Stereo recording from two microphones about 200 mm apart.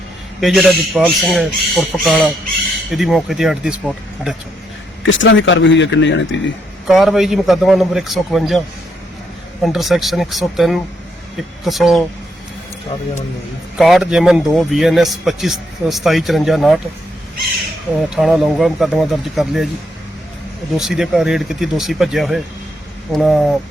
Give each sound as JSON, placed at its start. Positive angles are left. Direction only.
{"t": 0.3, "sound": "a man's voice", "side_deg": 0}
{"t": 5.0, "sound": "a man's voice", "side_deg": 70}
{"t": 6.8, "sound": "a man's voice", "side_deg": 0}
{"t": 9.6, "sound": "a man's voice", "side_deg": 0}
{"t": 13.7, "sound": "a man's voice", "side_deg": 0}
{"t": 18.1, "sound": "a man's voice", "side_deg": 0}
{"t": 20.7, "sound": "a man's voice", "side_deg": 0}